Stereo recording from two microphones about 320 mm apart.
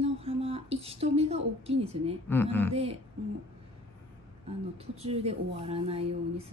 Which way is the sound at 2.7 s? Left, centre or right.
Centre.